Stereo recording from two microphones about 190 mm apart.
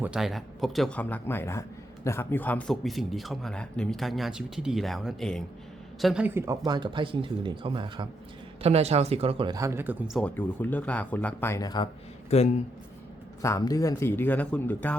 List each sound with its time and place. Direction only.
0.0 s speech: 5° right (ahead or behind)
6.7 s speech: 25° right (ahead or behind)
9.6 s speech: 15° right (ahead or behind)
10.2 s speech: 10° left (ahead or behind)
12.3 s speech: 35° left (ahead or behind)
13.4 s speech: 15° left (ahead or behind)